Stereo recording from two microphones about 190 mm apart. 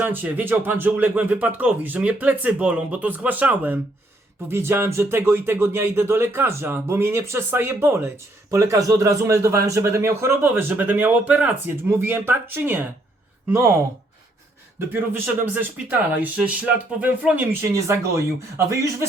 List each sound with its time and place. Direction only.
0.0 s speech: 10° right (ahead or behind)
14.9 s speech: 10° right (ahead or behind)